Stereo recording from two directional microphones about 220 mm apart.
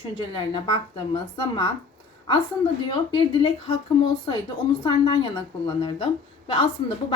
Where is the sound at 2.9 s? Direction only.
20° left (ahead or behind).